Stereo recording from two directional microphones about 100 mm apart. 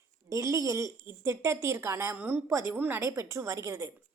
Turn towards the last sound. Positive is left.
turn(degrees=-30)  # may be behind; listen again after turning